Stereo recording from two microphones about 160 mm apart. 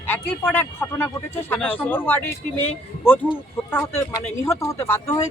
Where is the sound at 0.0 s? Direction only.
10° left (ahead or behind).